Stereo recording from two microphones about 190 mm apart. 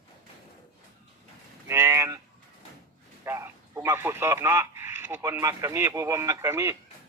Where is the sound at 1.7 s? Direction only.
15° right (ahead or behind).